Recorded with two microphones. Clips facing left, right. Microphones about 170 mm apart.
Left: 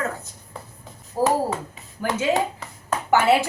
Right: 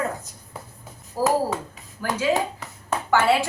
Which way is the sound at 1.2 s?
25° left (ahead or behind).